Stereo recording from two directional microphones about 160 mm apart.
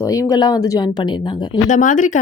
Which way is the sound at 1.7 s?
50° left (ahead or behind).